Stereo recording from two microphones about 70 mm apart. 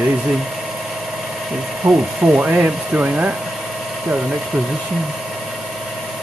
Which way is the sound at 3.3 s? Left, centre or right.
Centre.